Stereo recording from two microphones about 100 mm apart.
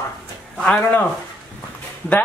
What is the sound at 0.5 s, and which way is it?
Speech, 5° left (ahead or behind).